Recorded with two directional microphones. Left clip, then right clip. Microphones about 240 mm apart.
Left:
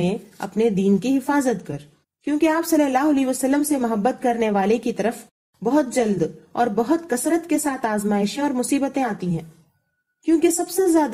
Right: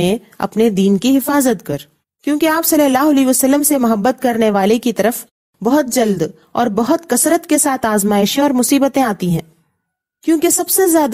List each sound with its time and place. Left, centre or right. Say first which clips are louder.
0.0 s a woman's voice: right 8 dB; right